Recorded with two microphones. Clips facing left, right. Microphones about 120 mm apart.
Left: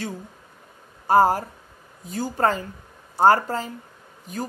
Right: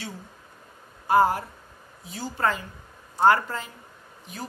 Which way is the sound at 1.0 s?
40° left (ahead or behind).